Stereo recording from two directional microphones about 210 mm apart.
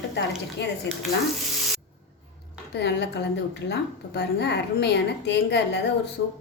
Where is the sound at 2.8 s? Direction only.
55° left (ahead or behind).